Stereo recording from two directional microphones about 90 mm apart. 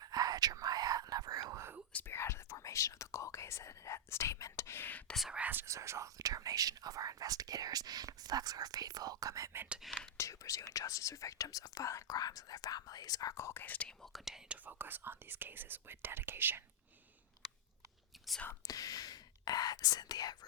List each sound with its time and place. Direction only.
0.0 s whispering: 45° right (ahead or behind)
1.9 s whispering: 15° left (ahead or behind)
2.1 s whispering: 30° left (ahead or behind)
5.1 s speech: 5° right (ahead or behind)
5.4 s speech: 20° right (ahead or behind)
5.6 s speech: 30° right (ahead or behind)
9.8 s speech: centre (ahead or behind)
10.2 s speech: 35° left (ahead or behind)
13.3 s speech: 30° left (ahead or behind)
14.0 s speech: 5° right (ahead or behind); by 16.6 s 25° right (ahead or behind)
18.6 s speech: 40° left (ahead or behind)